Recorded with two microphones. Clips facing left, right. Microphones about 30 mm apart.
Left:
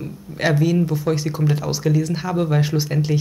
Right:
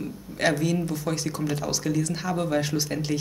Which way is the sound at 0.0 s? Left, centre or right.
Centre.